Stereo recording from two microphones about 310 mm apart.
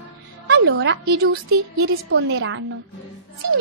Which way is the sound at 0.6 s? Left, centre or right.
Right.